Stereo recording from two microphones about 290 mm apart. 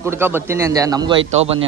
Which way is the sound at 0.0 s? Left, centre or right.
Centre.